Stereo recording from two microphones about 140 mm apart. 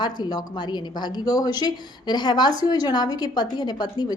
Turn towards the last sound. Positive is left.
turn(degrees=30)  # may be behind; listen again after turning